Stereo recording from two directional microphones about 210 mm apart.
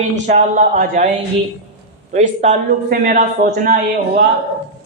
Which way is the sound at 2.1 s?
35° right (ahead or behind).